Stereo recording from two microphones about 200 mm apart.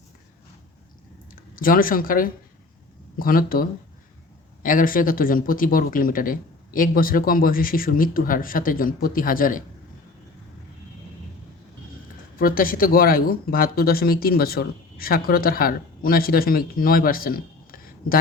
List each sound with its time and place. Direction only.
1.5 s speech: 45° left (ahead or behind)
12.4 s speech: 45° left (ahead or behind)